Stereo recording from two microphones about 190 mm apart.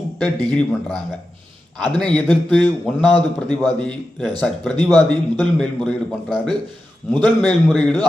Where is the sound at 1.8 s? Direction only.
5° left (ahead or behind).